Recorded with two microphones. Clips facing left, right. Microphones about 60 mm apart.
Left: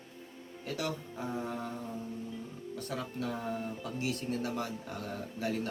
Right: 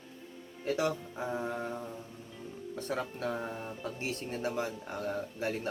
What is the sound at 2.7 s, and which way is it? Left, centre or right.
Speech, right.